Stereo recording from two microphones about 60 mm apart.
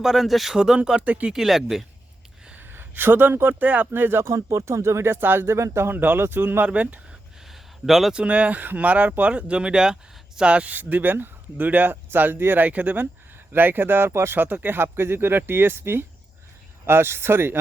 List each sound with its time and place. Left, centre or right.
0.0 s speech: centre
1.0 s speech: right
1.3 s speech: centre
2.6 s speech: right
4.2 s speech: right
5.9 s speech: right
6.7 s speech: right
7.1 s a sound: centre
8.1 s speech: right